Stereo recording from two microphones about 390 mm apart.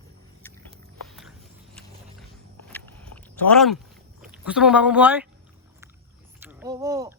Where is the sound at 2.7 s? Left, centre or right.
Centre.